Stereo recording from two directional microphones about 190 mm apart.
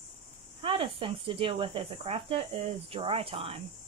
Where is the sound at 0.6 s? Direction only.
25° right (ahead or behind).